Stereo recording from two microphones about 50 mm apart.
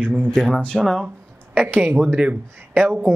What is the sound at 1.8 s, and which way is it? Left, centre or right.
Speech, centre.